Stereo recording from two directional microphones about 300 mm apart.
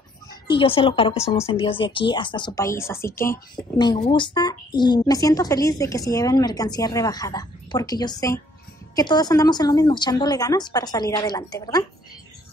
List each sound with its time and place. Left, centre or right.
0.3 s a woman's voice: centre